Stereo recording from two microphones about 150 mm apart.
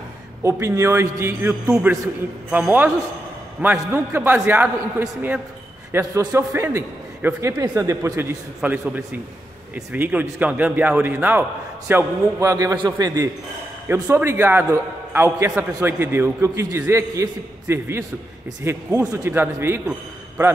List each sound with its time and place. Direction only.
0.4 s a man's voice: 20° right (ahead or behind)
1.5 s a man's voice: 5° right (ahead or behind)
8.5 s a man's voice: 5° right (ahead or behind)